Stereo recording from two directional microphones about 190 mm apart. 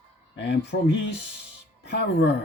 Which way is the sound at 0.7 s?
70° left (ahead or behind).